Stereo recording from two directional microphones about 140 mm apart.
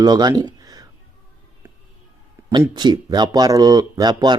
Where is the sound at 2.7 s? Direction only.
30° right (ahead or behind).